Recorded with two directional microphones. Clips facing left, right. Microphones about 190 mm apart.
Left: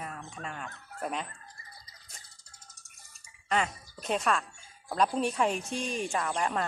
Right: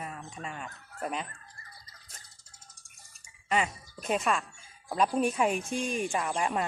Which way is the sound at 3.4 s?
5° right (ahead or behind).